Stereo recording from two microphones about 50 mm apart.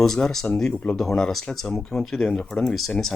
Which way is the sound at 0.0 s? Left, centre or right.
Centre.